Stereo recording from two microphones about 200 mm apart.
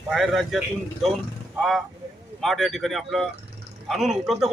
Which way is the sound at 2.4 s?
Centre (ahead or behind).